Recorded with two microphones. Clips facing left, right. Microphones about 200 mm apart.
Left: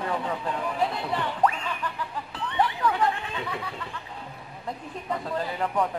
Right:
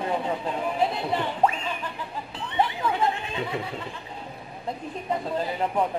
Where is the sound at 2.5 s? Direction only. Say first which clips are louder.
Even; 25° right (ahead or behind).